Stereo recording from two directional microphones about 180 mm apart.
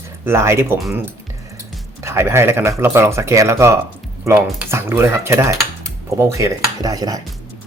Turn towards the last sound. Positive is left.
turn(degrees=-20)  # may be behind; listen again after turning